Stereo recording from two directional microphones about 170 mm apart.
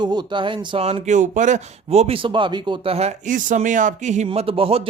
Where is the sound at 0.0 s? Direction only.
25° right (ahead or behind); by 4.3 s 45° right (ahead or behind).